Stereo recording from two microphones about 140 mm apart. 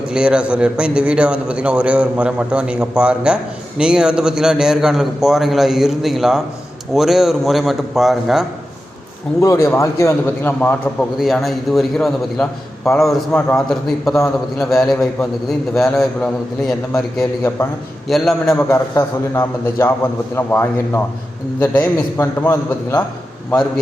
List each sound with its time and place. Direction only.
0.1 s a man's voice: 5° right (ahead or behind)
9.4 s a man's voice: 20° left (ahead or behind)
11.2 s a man's voice: centre (ahead or behind)
18.1 s a man's voice: 5° left (ahead or behind)
18.5 s a man's voice: 15° left (ahead or behind)